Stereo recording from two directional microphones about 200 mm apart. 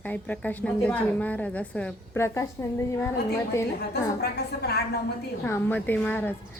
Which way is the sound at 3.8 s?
55° left (ahead or behind).